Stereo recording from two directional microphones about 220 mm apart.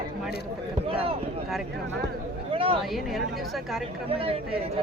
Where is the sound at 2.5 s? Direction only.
25° right (ahead or behind).